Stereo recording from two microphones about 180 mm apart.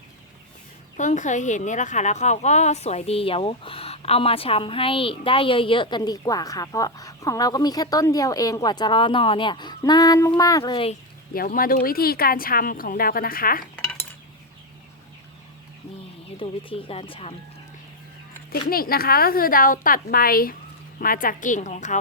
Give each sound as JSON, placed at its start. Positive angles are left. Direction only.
{"t": 0.9, "sound": "speech", "side_deg": 40}
{"t": 11.3, "sound": "speech", "side_deg": 50}
{"t": 16.4, "sound": "speech", "side_deg": 30}
{"t": 18.7, "sound": "a woman's voice", "side_deg": 55}